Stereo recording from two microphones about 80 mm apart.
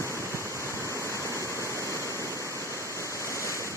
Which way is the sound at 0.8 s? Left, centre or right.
Right.